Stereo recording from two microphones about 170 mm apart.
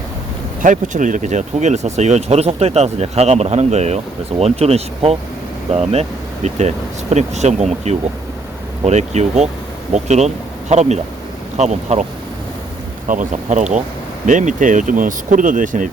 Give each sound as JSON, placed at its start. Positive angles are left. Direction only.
{"t": 0.6, "sound": "speech", "side_deg": -50}
{"t": 13.1, "sound": "speech", "side_deg": -45}